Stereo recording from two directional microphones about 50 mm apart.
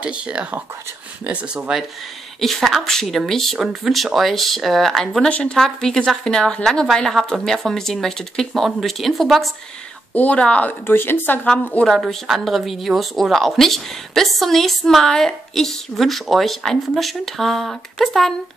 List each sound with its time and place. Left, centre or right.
0.0 s speech: right
2.4 s a woman's voice: centre
3.5 s a woman's voice: centre
5.3 s a woman's voice: centre
10.1 s a woman's voice: left
10.9 s a woman's voice: left
11.4 s a woman's voice: centre
12.0 s a woman's voice: centre